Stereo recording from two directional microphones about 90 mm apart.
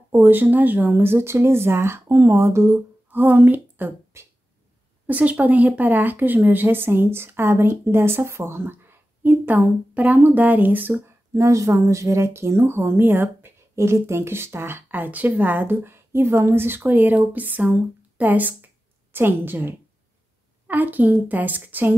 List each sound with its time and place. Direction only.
0.1 s speech: 20° right (ahead or behind)
11.3 s speech: 35° right (ahead or behind)